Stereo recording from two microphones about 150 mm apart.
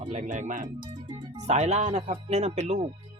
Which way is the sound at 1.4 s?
50° right (ahead or behind).